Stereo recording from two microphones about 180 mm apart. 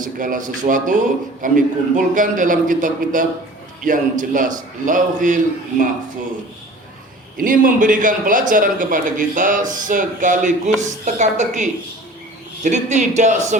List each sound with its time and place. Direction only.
0.0 s a man's voice: 45° right (ahead or behind)
7.3 s a man's voice: 50° right (ahead or behind)